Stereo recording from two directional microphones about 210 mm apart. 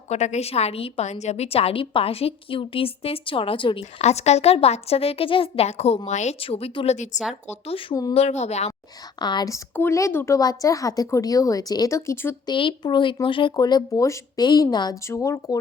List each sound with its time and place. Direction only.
0.1 s a woman's voice: 35° left (ahead or behind)
8.1 s speech: 30° left (ahead or behind)
9.1 s speech: 20° left (ahead or behind)
12.5 s a woman's voice: 25° left (ahead or behind)